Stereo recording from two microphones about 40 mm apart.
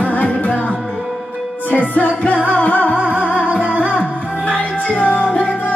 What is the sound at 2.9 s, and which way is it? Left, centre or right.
Music, right.